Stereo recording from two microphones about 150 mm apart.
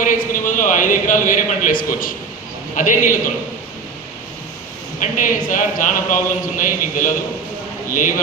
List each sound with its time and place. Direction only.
0.0 s a sound: 60° left (ahead or behind)
2.7 s speech: 60° left (ahead or behind)
4.9 s a man's voice: 60° left (ahead or behind)